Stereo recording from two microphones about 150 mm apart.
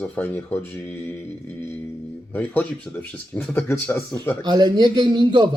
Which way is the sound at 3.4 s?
15° left (ahead or behind).